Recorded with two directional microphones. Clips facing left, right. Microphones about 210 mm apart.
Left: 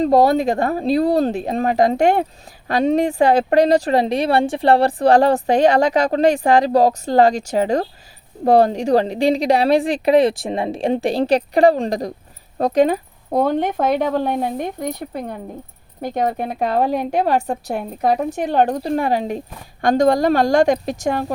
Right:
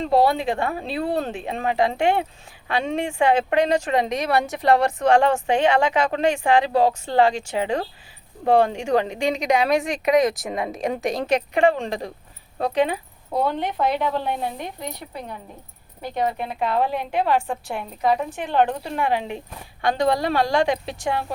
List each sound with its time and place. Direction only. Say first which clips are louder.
0.0 s speech: left 5 dB; 40° left (ahead or behind)